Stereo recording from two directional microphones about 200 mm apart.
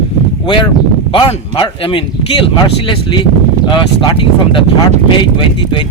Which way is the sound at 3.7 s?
25° left (ahead or behind).